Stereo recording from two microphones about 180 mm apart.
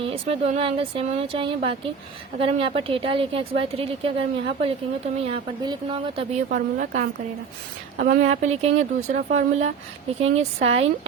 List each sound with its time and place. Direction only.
0.0 s a woman's voice: 35° right (ahead or behind)
6.5 s a woman's voice: 45° right (ahead or behind)